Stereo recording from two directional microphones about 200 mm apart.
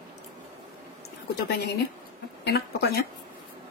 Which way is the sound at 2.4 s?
55° left (ahead or behind).